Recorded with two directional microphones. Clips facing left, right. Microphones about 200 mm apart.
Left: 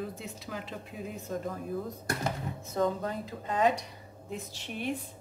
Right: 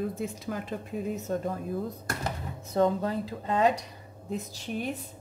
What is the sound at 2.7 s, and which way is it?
Speech, 30° right (ahead or behind).